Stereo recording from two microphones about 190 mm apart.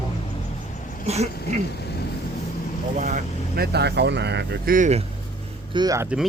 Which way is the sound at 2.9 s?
45° right (ahead or behind).